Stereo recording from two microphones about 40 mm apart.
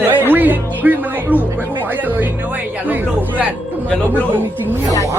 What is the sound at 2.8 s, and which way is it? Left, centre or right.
Speech, right.